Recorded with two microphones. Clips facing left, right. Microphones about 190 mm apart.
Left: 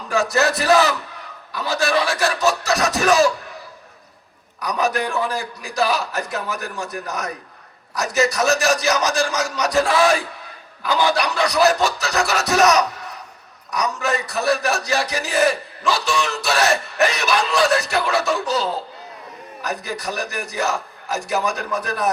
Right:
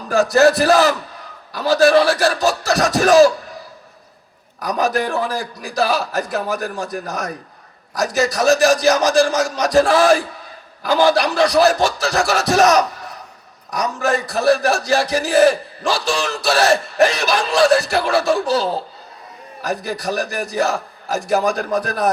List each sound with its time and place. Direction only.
0.1 s a man's voice: 35° right (ahead or behind)
4.6 s a man's voice: 35° right (ahead or behind)
14.3 s a man's voice: 30° right (ahead or behind)